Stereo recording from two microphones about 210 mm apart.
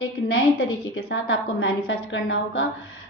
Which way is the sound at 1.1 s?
65° left (ahead or behind).